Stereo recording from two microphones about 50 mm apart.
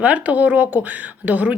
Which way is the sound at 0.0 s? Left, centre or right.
Right.